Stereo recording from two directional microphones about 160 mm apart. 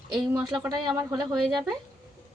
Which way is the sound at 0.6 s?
25° right (ahead or behind).